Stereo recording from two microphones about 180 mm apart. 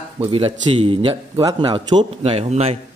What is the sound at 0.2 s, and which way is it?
A man's voice, 30° right (ahead or behind).